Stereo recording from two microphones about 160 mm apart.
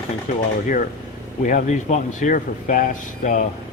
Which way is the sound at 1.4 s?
50° left (ahead or behind).